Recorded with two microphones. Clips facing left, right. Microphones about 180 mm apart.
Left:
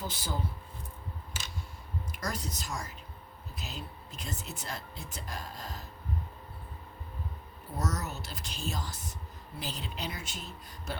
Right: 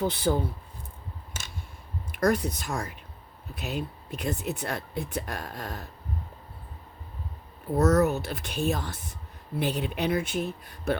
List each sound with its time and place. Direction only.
0.0 s speech: 60° right (ahead or behind)
2.1 s speech: 60° right (ahead or behind)
7.8 s speech: 60° right (ahead or behind)